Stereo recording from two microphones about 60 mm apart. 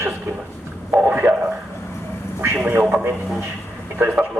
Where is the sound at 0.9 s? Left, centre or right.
Right.